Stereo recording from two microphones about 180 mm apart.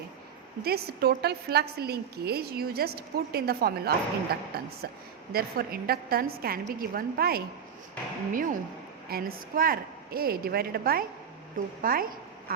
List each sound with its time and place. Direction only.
0.6 s a woman's voice: 60° right (ahead or behind)